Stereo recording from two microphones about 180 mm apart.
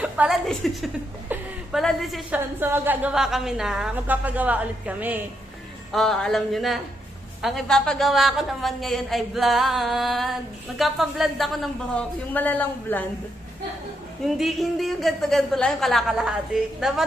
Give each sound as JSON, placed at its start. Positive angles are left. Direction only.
{"t": 0.0, "sound": "a woman's voice", "side_deg": -5}
{"t": 2.6, "sound": "a woman's voice", "side_deg": -10}
{"t": 5.9, "sound": "a woman's voice", "side_deg": 0}
{"t": 14.3, "sound": "a woman's voice", "side_deg": 0}